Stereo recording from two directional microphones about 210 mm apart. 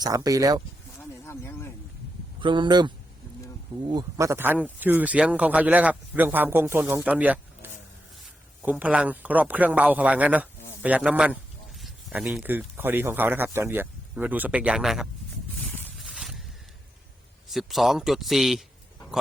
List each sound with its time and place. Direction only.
0.0 s speech: 15° right (ahead or behind)
1.3 s speech: 10° left (ahead or behind)
2.4 s a man's voice: 25° right (ahead or behind); by 15.0 s centre (ahead or behind)
16.0 s a sound: centre (ahead or behind)
17.5 s a man's voice: centre (ahead or behind)